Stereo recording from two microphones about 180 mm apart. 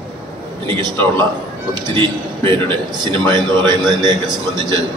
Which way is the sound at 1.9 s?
25° right (ahead or behind).